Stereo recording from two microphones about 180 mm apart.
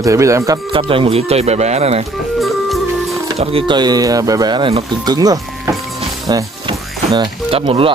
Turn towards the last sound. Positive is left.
turn(degrees=-30)  # may be behind; listen again after turning